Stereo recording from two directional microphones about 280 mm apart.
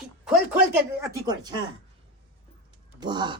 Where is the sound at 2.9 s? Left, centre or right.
Centre.